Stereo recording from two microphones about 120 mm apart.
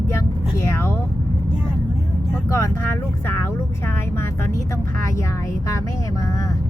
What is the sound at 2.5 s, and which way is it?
Speech, 25° left (ahead or behind).